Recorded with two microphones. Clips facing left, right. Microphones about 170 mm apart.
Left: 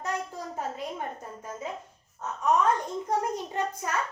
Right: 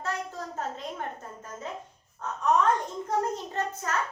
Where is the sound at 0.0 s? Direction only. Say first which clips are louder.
Left 1 dB; 10° left (ahead or behind).